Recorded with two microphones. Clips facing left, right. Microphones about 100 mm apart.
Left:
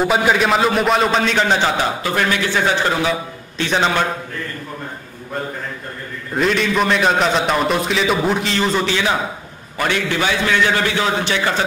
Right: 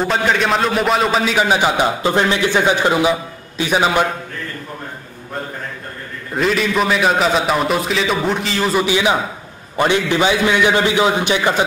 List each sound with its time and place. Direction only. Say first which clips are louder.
0.0 s a man's voice: left 1 dB; 5° left (ahead or behind); by 1.9 s 10° right (ahead or behind)
2.0 s a man's voice: right 3 dB; 25° right (ahead or behind)
6.3 s a man's voice: even; centre (ahead or behind)